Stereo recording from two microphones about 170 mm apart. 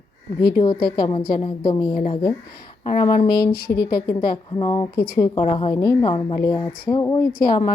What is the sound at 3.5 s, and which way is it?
Speech, 65° left (ahead or behind).